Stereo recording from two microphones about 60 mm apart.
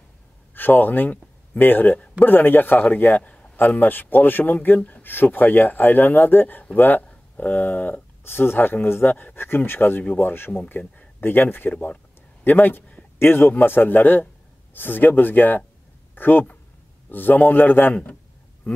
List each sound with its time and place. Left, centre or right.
0.6 s speech: left
8.2 s speech: left
11.7 s speech: left
12.4 s speech: left